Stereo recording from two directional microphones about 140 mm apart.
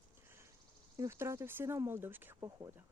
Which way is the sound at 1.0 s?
20° right (ahead or behind).